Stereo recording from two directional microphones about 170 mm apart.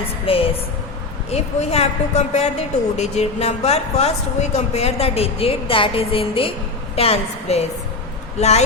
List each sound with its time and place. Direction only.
0.3 s a woman's voice: 35° left (ahead or behind)